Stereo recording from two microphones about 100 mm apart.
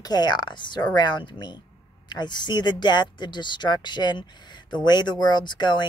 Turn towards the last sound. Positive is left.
turn(degrees=50)  # may be behind; listen again after turning